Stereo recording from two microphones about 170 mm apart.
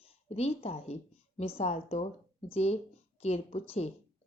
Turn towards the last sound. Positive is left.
turn(degrees=40)  # may be behind; listen again after turning